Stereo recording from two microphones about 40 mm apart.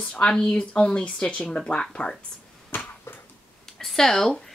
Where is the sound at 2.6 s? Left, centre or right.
Left.